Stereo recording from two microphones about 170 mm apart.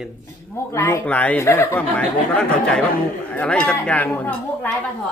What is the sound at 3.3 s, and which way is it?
Speech, 5° left (ahead or behind).